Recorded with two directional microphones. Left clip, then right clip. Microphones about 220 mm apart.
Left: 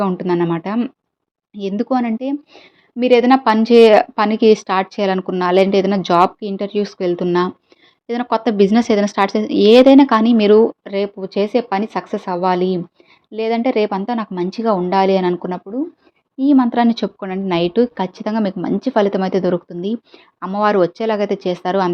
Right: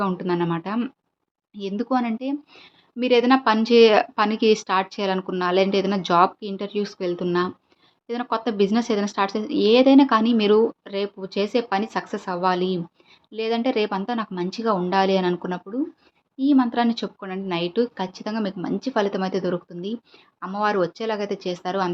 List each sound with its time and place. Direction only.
0.0 s a woman's voice: 20° left (ahead or behind)